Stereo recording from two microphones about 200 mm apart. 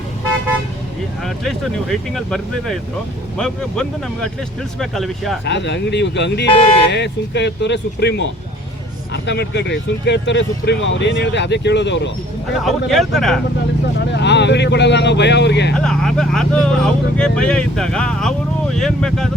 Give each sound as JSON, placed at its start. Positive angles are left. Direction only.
{"t": 1.2, "sound": "speech", "side_deg": 0}
{"t": 5.5, "sound": "speech", "side_deg": 60}
{"t": 12.6, "sound": "speech", "side_deg": 0}
{"t": 14.1, "sound": "speech", "side_deg": 60}
{"t": 15.7, "sound": "speech", "side_deg": 5}